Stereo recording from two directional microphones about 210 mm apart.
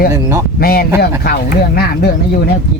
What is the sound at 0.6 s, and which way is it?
Speech, 45° left (ahead or behind).